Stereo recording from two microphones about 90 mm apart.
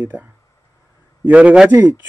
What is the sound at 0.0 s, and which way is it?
A man's voice, 20° right (ahead or behind).